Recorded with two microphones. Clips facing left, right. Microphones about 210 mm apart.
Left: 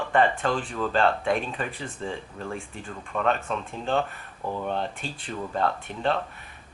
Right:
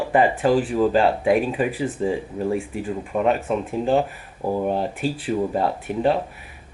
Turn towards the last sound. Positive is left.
turn(degrees=-10)  # may be behind; listen again after turning